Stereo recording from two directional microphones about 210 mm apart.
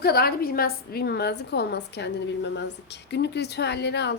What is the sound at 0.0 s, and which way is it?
A woman's voice, 45° left (ahead or behind).